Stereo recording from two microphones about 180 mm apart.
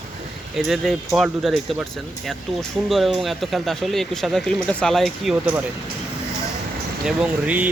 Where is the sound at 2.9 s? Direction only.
Centre (ahead or behind).